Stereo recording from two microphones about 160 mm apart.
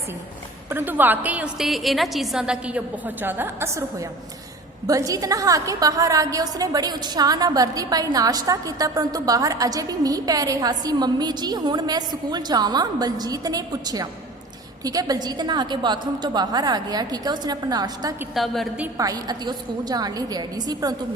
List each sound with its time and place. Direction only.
0.7 s a woman's voice: 10° right (ahead or behind)
4.9 s a woman's voice: 20° right (ahead or behind)
18.3 s a woman's voice: centre (ahead or behind)
18.9 s a woman's voice: 25° right (ahead or behind)